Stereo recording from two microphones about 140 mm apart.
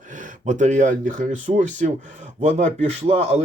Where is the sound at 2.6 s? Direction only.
50° right (ahead or behind).